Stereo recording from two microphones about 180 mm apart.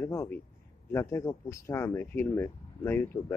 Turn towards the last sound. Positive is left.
turn(degrees=15)  # may be behind; listen again after turning